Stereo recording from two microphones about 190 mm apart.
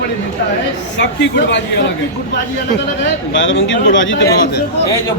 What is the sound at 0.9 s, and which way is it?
Speech, 65° left (ahead or behind).